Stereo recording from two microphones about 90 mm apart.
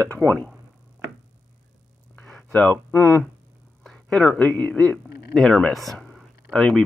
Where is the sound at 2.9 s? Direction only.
30° left (ahead or behind).